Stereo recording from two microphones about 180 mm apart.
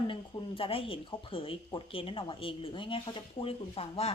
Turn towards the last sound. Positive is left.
turn(degrees=35)  # may be behind; listen again after turning